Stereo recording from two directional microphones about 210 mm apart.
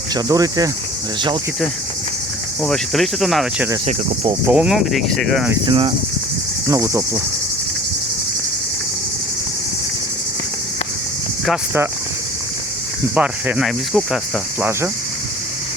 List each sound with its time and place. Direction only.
0.1 s speech: 15° right (ahead or behind)
2.6 s speech: centre (ahead or behind)
3.8 s speech: 30° right (ahead or behind)
4.4 s speech: 5° right (ahead or behind)
5.6 s speech: 25° right (ahead or behind)
6.7 s speech: 15° right (ahead or behind)
11.4 s speech: 5° right (ahead or behind)
13.1 s speech: 5° right (ahead or behind)
14.6 s speech: 10° right (ahead or behind)